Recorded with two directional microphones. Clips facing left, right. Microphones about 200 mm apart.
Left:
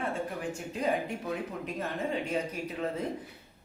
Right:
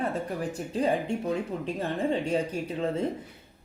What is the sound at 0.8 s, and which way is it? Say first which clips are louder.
Speech: right 5 dB; 30° right (ahead or behind).